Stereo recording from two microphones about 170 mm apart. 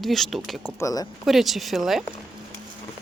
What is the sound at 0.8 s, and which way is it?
Speech, 20° left (ahead or behind).